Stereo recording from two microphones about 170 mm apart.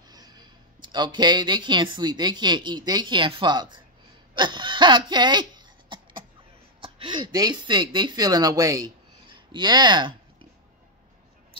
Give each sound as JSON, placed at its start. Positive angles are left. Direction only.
{"t": 0.0, "sound": "speech", "side_deg": -25}